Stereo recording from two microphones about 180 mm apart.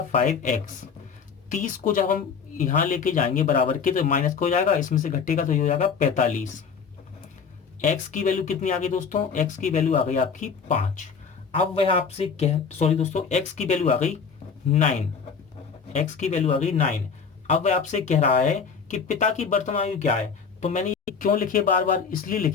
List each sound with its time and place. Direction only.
0.1 s speech: 45° left (ahead or behind)
7.9 s speech: 40° left (ahead or behind)
11.6 s speech: 35° left (ahead or behind); by 22.5 s 50° left (ahead or behind)